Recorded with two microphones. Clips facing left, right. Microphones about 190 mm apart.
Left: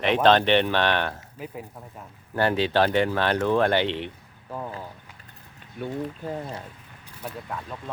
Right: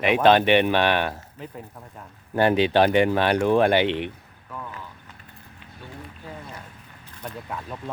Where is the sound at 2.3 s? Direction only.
15° right (ahead or behind).